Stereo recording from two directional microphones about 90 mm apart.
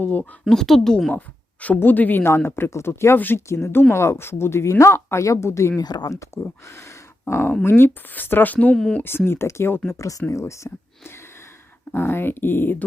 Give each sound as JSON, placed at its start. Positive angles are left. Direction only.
{"t": 0.0, "sound": "speech", "side_deg": 20}
{"t": 0.4, "sound": "speech", "side_deg": 5}
{"t": 1.6, "sound": "speech", "side_deg": 20}
{"t": 5.8, "sound": "speech", "side_deg": 50}
{"t": 6.1, "sound": "speech", "side_deg": 30}
{"t": 8.7, "sound": "speech", "side_deg": 5}
{"t": 9.0, "sound": "speech", "side_deg": 25}